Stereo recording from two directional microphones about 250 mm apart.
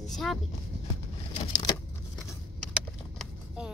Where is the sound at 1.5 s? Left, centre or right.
Centre.